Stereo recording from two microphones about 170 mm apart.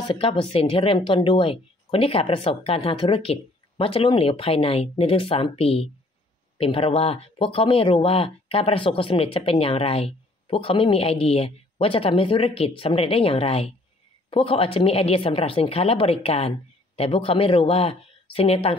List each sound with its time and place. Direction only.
0.0 s speech: 30° left (ahead or behind)